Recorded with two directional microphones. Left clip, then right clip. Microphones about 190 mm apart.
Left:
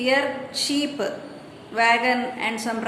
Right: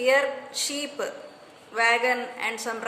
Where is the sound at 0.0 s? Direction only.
30° right (ahead or behind).